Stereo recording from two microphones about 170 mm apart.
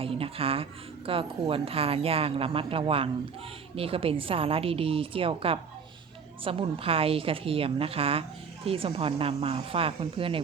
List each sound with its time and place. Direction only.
0.0 s speech: 35° right (ahead or behind)